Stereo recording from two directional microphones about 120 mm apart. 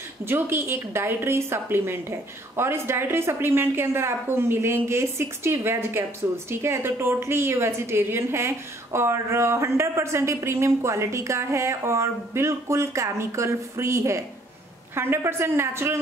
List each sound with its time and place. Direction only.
0.2 s a woman's voice: 20° right (ahead or behind)